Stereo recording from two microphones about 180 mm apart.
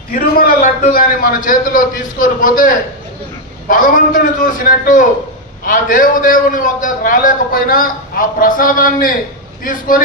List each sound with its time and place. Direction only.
0.1 s a man's voice: 55° left (ahead or behind)